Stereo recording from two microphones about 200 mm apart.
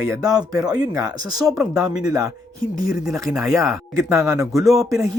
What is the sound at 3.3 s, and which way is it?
Speech, centre (ahead or behind).